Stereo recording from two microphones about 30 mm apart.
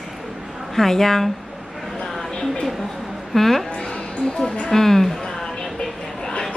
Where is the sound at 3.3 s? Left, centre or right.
Centre.